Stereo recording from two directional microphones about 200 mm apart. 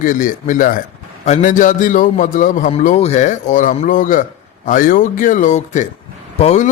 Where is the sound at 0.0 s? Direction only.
40° left (ahead or behind).